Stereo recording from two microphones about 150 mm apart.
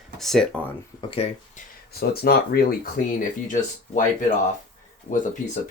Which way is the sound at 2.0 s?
90° left.